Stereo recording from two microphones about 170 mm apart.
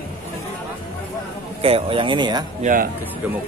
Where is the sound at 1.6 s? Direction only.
35° right (ahead or behind).